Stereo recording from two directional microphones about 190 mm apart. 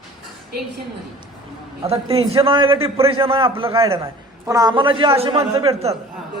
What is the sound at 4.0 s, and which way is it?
A man's voice, 15° right (ahead or behind).